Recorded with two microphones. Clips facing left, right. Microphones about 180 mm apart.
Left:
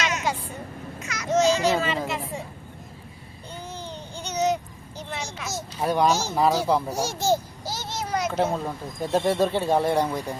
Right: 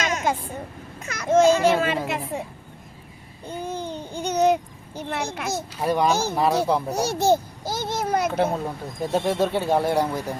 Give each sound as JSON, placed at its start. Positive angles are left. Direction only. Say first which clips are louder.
{"t": 0.0, "sound": "vehicle", "louder": "right 3 dB", "side_deg": -50}
{"t": 1.0, "sound": "children playing", "louder": "right 4 dB", "side_deg": -55}
{"t": 2.0, "sound": "a woman's voice", "louder": "right 3 dB", "side_deg": -55}
{"t": 3.5, "sound": "a sound", "louder": "right 7 dB", "side_deg": -55}
{"t": 5.8, "sound": "speech", "louder": "even", "side_deg": 0}
{"t": 6.1, "sound": "a woman's voice", "louder": "right 1 dB", "side_deg": -55}
{"t": 6.9, "sound": "a sound", "louder": "right 4 dB", "side_deg": -65}
{"t": 8.3, "sound": "speech", "louder": "right 1 dB", "side_deg": 0}